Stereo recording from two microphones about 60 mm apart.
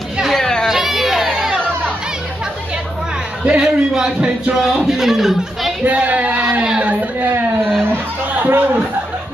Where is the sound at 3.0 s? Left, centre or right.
Centre.